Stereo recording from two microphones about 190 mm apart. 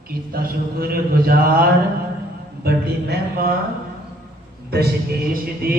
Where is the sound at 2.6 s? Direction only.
55° right (ahead or behind).